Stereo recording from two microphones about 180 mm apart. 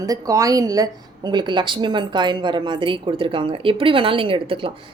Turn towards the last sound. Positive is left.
turn(degrees=-30)  # may be behind; listen again after turning